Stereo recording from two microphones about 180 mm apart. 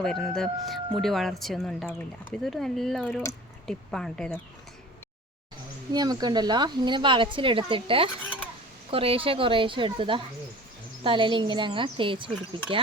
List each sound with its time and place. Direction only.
0.0 s speech: 5° left (ahead or behind)
5.9 s a woman's voice: 20° right (ahead or behind)